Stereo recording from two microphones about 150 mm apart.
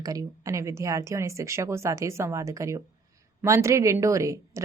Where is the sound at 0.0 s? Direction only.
25° right (ahead or behind).